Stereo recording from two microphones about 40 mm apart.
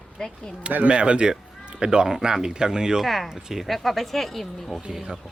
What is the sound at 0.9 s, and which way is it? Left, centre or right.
Speech, right.